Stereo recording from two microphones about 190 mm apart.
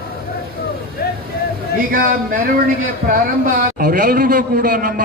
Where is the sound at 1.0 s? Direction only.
55° left (ahead or behind).